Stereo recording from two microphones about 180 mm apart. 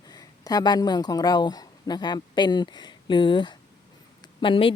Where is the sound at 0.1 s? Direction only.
20° left (ahead or behind).